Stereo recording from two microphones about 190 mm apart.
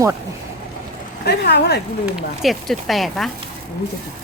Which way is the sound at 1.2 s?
60° left (ahead or behind).